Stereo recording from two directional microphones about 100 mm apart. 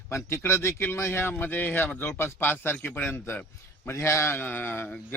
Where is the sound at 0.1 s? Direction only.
25° left (ahead or behind).